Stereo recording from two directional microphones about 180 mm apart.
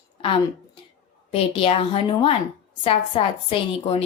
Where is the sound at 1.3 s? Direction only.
30° left (ahead or behind).